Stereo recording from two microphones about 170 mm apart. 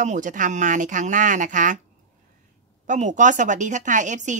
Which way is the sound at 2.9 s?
45° right (ahead or behind).